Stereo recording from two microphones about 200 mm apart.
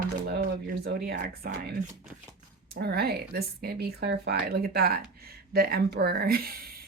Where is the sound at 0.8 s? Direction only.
50° right (ahead or behind).